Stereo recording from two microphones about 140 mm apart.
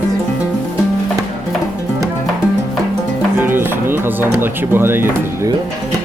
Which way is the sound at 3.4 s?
15° right (ahead or behind).